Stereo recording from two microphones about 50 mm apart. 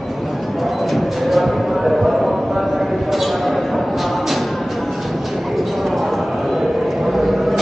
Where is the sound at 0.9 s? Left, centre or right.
Centre.